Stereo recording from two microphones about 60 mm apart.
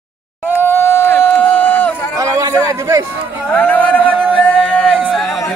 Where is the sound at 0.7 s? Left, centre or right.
Left.